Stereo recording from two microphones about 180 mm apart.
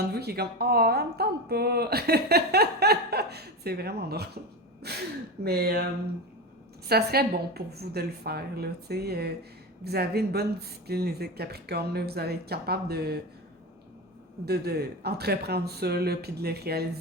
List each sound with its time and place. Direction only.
0.0 s speech: 65° right (ahead or behind)
14.4 s speech: 60° right (ahead or behind)